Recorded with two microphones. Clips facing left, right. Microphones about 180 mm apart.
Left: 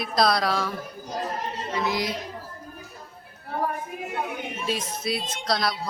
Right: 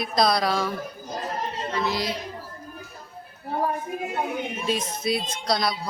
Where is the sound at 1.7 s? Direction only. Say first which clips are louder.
Left 1 dB; 15° left (ahead or behind).